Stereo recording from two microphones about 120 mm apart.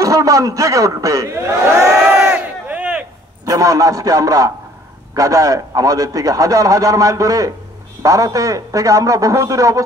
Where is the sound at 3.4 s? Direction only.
30° right (ahead or behind).